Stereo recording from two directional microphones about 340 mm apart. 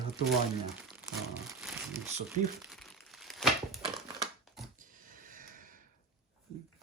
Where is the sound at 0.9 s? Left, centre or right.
Centre.